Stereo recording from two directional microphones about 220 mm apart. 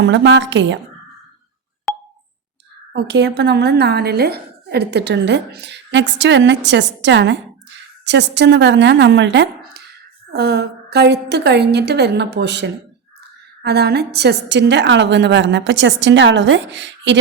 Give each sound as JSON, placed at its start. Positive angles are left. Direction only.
{"t": 0.0, "sound": "a woman's voice", "side_deg": -55}
{"t": 2.9, "sound": "a woman's voice", "side_deg": -50}